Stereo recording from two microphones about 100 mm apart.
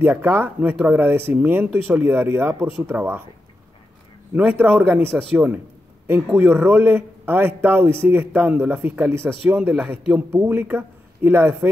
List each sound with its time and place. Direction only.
0.0 s a man's voice: 20° right (ahead or behind)
4.6 s a man's voice: 20° right (ahead or behind)